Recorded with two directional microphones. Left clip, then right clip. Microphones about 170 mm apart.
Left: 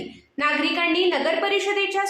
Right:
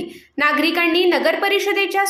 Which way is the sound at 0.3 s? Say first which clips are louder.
Right 5 dB; 45° right (ahead or behind).